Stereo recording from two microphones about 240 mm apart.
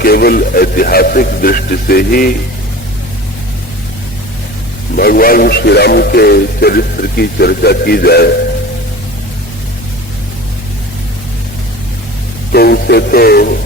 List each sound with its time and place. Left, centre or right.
0.0 s speech: left
4.9 s speech: left
12.5 s speech: left